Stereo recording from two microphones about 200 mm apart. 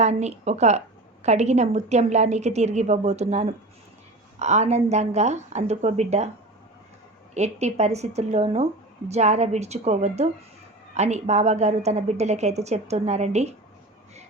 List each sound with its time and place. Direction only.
0.0 s a woman's voice: 35° right (ahead or behind)
7.3 s a woman's voice: 35° right (ahead or behind)